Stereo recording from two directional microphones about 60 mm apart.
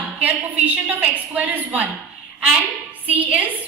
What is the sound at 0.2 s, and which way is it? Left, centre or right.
A woman's voice, right.